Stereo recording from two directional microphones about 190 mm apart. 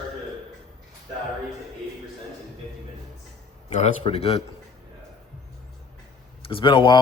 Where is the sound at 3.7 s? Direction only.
35° left (ahead or behind).